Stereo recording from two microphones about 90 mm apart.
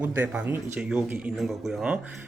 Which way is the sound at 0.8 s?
10° right (ahead or behind).